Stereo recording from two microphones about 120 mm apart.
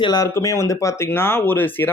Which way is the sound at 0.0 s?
35° left (ahead or behind).